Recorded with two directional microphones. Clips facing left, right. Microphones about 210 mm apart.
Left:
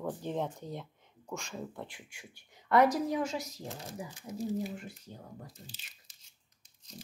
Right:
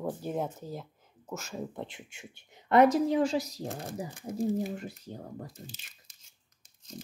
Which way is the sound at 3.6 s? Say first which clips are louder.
Right 5 dB; 50° right (ahead or behind).